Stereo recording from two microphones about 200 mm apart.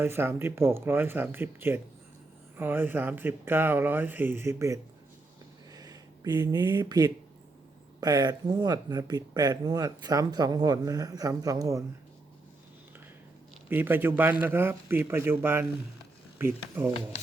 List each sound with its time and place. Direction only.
0.0 s speech: 10° right (ahead or behind)
5.7 s a sound: 20° right (ahead or behind)
8.0 s speech: 20° right (ahead or behind)
13.7 s speech: 10° right (ahead or behind)